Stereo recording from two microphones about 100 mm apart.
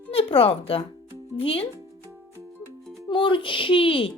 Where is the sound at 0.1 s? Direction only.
70° left (ahead or behind).